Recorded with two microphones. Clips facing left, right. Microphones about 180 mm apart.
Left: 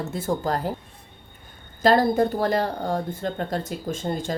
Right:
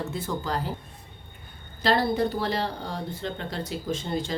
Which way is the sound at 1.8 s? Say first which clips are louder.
Left 5 dB; 45° left (ahead or behind).